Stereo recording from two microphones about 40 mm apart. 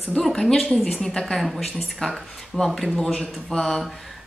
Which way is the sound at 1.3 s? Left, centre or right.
Centre.